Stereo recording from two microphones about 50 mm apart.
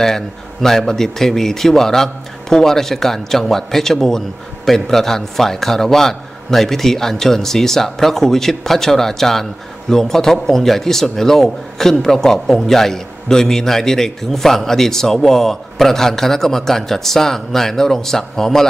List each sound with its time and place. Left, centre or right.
0.0 s a man's voice: centre